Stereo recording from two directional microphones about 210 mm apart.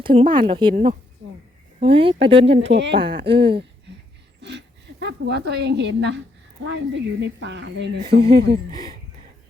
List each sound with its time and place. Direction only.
0.0 s speech: 25° right (ahead or behind)
1.8 s speech: 25° right (ahead or behind)
2.5 s speech: 60° right (ahead or behind)
3.2 s speech: 25° right (ahead or behind)
4.4 s a woman's voice: 55° right (ahead or behind)